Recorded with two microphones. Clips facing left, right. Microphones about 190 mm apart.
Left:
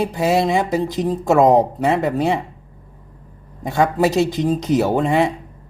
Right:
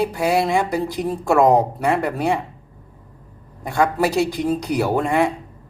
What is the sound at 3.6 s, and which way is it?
Speech, 20° left (ahead or behind).